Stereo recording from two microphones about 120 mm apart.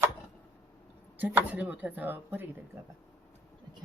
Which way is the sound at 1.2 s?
15° right (ahead or behind).